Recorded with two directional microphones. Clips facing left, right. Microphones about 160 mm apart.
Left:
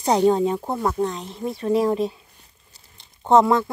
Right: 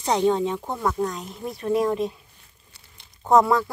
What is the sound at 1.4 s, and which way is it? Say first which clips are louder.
Speech: left 5 dB; centre (ahead or behind).